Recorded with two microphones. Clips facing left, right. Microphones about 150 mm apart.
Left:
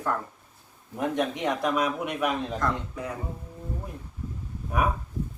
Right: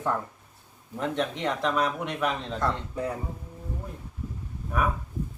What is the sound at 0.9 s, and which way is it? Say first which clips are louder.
Speech: left 2 dB; 10° left (ahead or behind).